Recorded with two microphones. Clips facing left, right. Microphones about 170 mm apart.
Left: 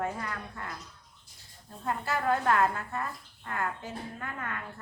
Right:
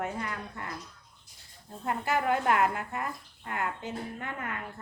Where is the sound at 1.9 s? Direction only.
20° right (ahead or behind).